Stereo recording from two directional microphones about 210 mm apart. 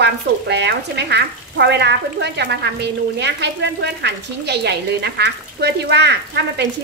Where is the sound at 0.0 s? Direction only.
55° right (ahead or behind).